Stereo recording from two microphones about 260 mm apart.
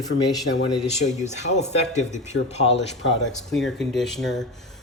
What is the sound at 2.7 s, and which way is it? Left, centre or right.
Speech, left.